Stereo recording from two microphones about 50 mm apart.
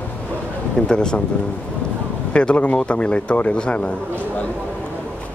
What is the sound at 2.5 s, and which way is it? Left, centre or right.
Speech, left.